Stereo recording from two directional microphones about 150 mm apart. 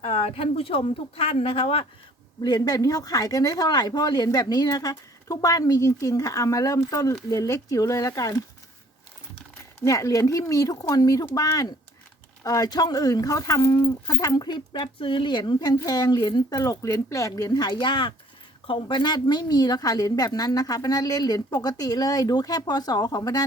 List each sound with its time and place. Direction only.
0.0 s speech: 45° left (ahead or behind)
2.4 s speech: 25° left (ahead or behind)
9.8 s speech: 20° left (ahead or behind)